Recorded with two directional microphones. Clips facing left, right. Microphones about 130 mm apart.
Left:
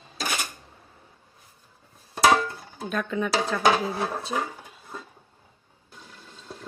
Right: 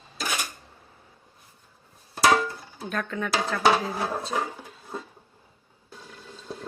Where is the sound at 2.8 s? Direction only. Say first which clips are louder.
Left 3 dB; 15° left (ahead or behind).